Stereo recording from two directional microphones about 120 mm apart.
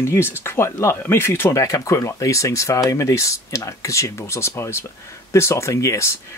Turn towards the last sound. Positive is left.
turn(degrees=25)  # may be behind; listen again after turning